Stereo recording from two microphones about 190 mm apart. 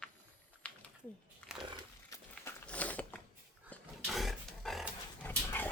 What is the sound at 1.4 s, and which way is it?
Crushing, 5° left (ahead or behind).